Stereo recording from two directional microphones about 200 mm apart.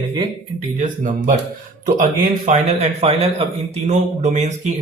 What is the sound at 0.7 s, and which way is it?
Speech, 40° right (ahead or behind).